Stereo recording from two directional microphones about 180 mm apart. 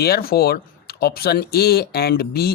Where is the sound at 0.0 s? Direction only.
60° left (ahead or behind).